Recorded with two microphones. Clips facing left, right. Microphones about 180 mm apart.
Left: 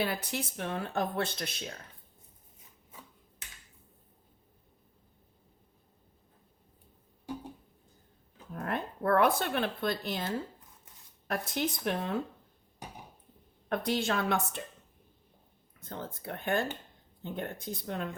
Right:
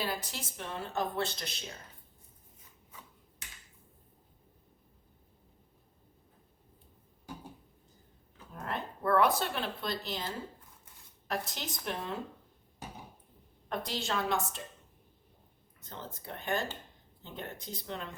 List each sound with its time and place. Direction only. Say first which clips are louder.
0.0 s speech: left 4 dB; 60° left (ahead or behind)
8.5 s speech: left 4 dB; 55° left (ahead or behind)
11.3 s speech: left 5 dB; 55° left (ahead or behind)
13.7 s speech: left 5 dB; 55° left (ahead or behind)
15.8 s speech: left 5 dB; 55° left (ahead or behind)